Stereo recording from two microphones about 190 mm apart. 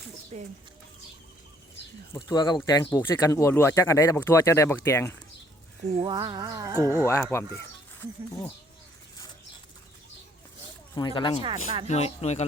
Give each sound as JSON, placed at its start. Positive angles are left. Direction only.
{"t": 0.3, "sound": "speech", "side_deg": -35}
{"t": 2.1, "sound": "speech", "side_deg": 25}
{"t": 6.1, "sound": "a sound", "side_deg": -20}
{"t": 6.9, "sound": "speech", "side_deg": 15}
{"t": 10.9, "sound": "speech", "side_deg": 25}
{"t": 11.4, "sound": "a sound", "side_deg": -25}
{"t": 11.9, "sound": "speech", "side_deg": 35}